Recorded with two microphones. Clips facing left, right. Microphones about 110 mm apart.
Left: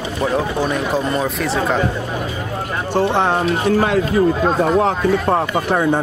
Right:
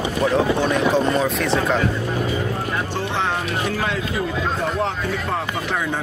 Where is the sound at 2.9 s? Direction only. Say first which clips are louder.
Left 11 dB; 55° left (ahead or behind).